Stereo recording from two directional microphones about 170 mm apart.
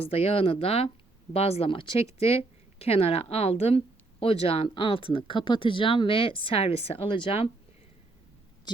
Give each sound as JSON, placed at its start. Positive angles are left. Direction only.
{"t": 0.0, "sound": "speech", "side_deg": 35}